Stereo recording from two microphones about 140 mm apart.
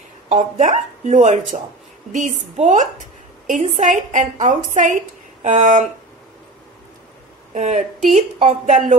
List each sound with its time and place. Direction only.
0.3 s a woman's voice: 55° right (ahead or behind)
7.5 s a woman's voice: 60° right (ahead or behind)